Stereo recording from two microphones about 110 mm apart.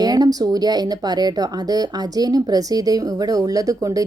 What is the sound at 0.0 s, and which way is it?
Speech, 35° right (ahead or behind).